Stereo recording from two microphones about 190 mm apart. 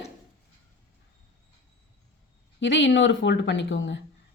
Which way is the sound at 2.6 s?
75° left (ahead or behind).